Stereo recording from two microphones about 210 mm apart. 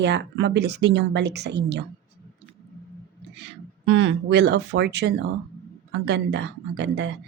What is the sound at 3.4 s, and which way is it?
A man's voice, 60° right (ahead or behind).